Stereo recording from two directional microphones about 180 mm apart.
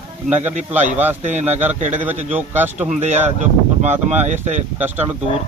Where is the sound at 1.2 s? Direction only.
40° right (ahead or behind).